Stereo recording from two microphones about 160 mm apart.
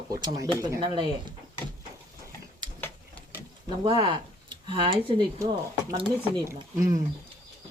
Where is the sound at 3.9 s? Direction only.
30° right (ahead or behind).